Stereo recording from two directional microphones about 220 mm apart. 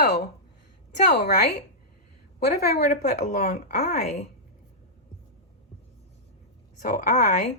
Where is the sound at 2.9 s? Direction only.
35° left (ahead or behind).